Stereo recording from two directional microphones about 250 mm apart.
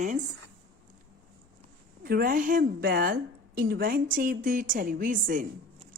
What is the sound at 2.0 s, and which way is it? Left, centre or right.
Speech, right.